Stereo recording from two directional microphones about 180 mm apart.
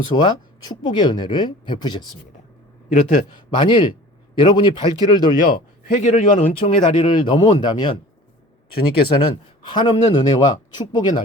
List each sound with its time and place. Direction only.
0.1 s a man's voice: 25° left (ahead or behind)
2.9 s a man's voice: 45° left (ahead or behind)
3.5 s a man's voice: 25° left (ahead or behind)
5.9 s a man's voice: 40° left (ahead or behind); by 11.2 s 25° left (ahead or behind)